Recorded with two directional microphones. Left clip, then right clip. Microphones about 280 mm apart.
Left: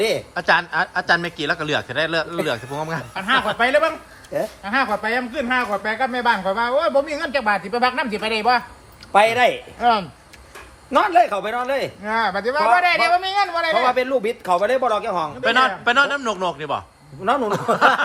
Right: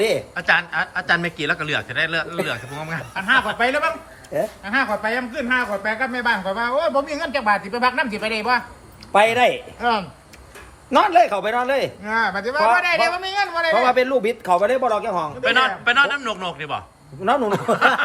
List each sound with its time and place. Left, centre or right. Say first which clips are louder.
0.0 s a man's voice: even; centre
3.2 s speech: even; left
9.1 s a man's voice: even; centre
9.7 s speech: left 3 dB; left
10.9 s speech: right 1 dB; centre
12.0 s speech: left 1 dB; left
13.7 s a man's voice: right 2 dB; centre